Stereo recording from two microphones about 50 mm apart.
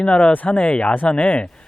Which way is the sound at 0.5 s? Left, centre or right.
Left.